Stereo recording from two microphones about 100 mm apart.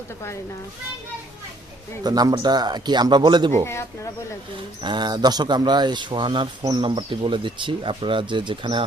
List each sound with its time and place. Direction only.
2.0 s speech: 40° right (ahead or behind)
3.5 s speech: 25° left (ahead or behind)
4.8 s speech: 50° right (ahead or behind)